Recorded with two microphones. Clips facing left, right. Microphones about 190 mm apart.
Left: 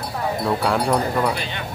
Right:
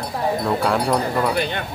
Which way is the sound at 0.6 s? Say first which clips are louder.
Even; centre (ahead or behind).